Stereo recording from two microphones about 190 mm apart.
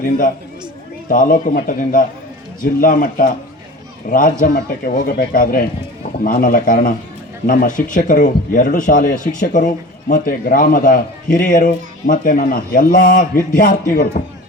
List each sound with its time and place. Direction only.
1.1 s a man's voice: 45° left (ahead or behind)